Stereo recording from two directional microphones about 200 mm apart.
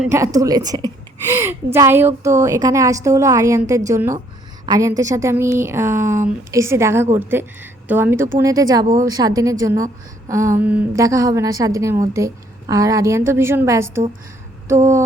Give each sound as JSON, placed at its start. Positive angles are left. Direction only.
{"t": 0.0, "sound": "a woman's voice", "side_deg": -15}